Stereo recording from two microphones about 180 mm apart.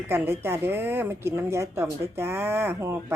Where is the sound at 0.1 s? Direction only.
15° right (ahead or behind).